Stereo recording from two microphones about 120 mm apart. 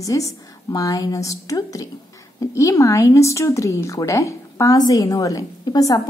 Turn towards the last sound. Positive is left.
turn(degrees=30)  # may be behind; listen again after turning